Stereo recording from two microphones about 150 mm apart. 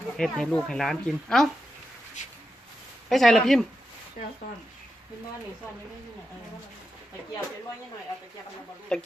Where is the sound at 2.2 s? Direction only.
55° left (ahead or behind).